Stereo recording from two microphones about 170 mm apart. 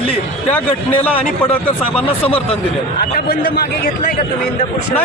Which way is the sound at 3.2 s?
60° left (ahead or behind).